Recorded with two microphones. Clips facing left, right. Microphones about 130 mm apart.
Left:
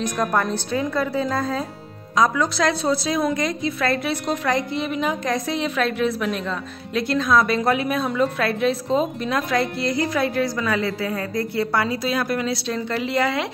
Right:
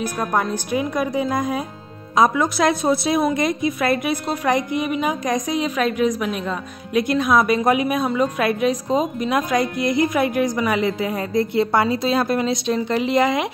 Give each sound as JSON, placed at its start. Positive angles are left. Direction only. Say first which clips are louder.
{"t": 0.0, "sound": "a woman's voice", "louder": "even", "side_deg": -15}